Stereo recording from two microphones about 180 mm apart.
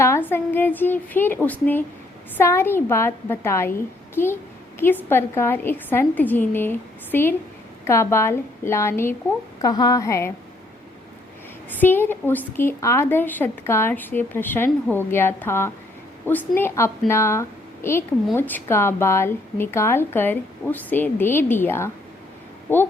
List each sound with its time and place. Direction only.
0.0 s a woman's voice: 10° left (ahead or behind)
11.7 s a woman's voice: 10° left (ahead or behind)